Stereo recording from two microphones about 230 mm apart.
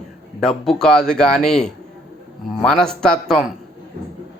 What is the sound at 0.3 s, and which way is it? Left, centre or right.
A man's voice, centre.